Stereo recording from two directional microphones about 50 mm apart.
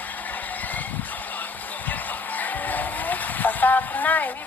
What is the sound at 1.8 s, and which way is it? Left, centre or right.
Speech, left.